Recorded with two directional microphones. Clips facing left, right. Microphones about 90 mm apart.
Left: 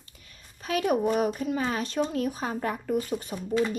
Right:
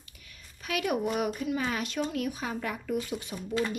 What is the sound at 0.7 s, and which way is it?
Speech, 35° left (ahead or behind).